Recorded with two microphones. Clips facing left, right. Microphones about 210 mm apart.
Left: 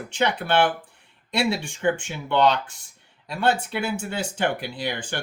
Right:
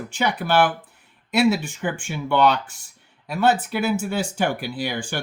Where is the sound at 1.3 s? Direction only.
30° left (ahead or behind).